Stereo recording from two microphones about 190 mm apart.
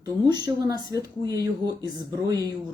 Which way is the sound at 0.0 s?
20° right (ahead or behind).